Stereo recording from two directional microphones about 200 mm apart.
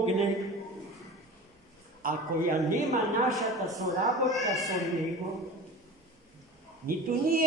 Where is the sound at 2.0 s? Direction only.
45° right (ahead or behind).